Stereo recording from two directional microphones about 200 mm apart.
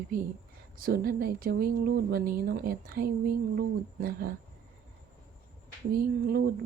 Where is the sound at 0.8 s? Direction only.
45° right (ahead or behind).